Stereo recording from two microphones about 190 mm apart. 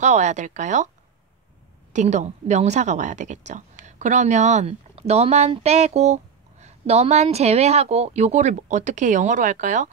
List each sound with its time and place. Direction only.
0.0 s a woman's voice: 40° right (ahead or behind)
1.9 s a woman's voice: 40° right (ahead or behind)